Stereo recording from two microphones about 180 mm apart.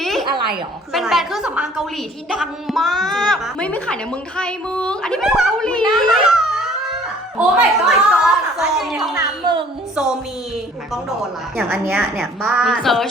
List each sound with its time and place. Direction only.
0.0 s a sound: centre (ahead or behind)
0.9 s speech: centre (ahead or behind)
9.1 s speech: 25° right (ahead or behind)
9.9 s speech: 5° right (ahead or behind)
11.5 s speech: 5° right (ahead or behind)